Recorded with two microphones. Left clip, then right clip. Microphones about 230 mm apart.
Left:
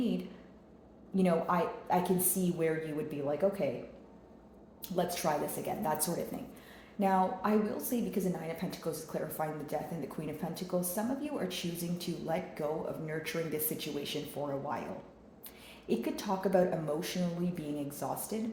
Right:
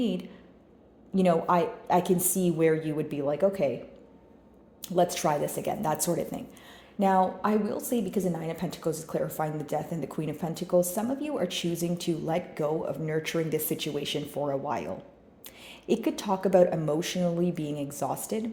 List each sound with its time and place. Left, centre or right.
1.1 s a woman's voice: right
4.8 s a woman's voice: right
15.9 s a woman's voice: right